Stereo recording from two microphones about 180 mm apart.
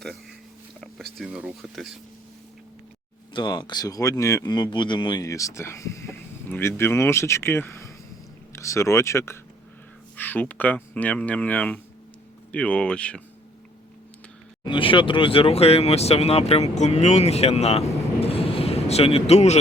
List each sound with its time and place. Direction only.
0.8 s speech: centre (ahead or behind)
3.3 s speech: 25° left (ahead or behind); by 13.2 s 5° left (ahead or behind)
14.6 s speech: 25° left (ahead or behind)